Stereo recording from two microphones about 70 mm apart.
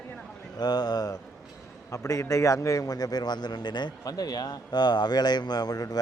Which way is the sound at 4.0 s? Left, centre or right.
Left.